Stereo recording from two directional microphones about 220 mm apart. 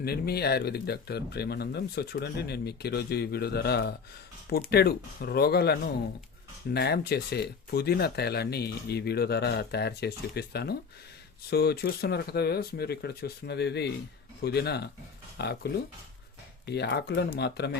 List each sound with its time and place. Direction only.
0.0 s speech: 45° left (ahead or behind)